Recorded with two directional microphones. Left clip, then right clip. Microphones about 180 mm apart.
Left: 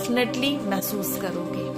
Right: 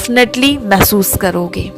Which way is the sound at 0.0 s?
50° right (ahead or behind).